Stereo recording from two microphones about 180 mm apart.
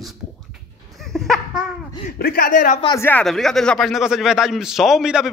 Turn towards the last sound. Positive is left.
turn(degrees=-5)  # may be behind; listen again after turning